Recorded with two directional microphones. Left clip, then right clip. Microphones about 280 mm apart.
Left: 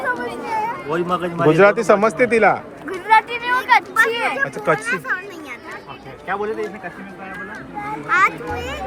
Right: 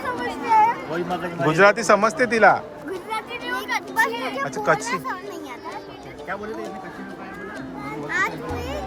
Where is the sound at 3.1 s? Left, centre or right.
Centre.